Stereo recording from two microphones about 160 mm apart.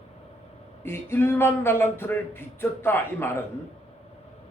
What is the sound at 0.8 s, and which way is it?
Speech, 15° left (ahead or behind).